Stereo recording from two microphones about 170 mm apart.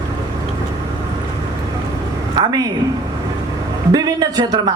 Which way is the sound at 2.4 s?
20° right (ahead or behind).